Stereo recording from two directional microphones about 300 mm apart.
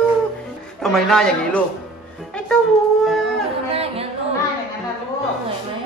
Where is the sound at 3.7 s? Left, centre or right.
Centre.